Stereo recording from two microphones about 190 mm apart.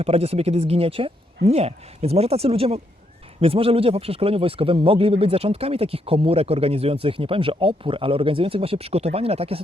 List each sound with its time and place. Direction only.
0.0 s speech: 30° right (ahead or behind)